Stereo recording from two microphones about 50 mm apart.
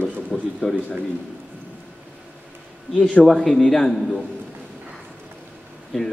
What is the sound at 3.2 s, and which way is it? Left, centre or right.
Speech, centre.